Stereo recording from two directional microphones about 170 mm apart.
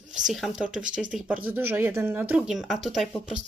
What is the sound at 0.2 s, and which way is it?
Speech, centre (ahead or behind).